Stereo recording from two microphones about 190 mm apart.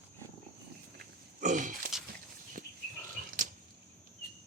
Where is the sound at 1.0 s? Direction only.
40° right (ahead or behind).